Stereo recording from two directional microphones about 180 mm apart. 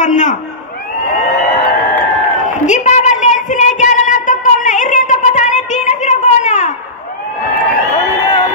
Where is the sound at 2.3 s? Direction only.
45° left (ahead or behind).